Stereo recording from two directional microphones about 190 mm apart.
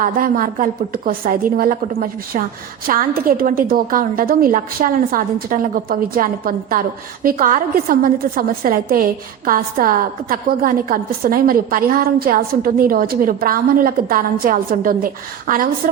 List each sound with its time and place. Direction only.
0.0 s a woman's voice: 45° right (ahead or behind)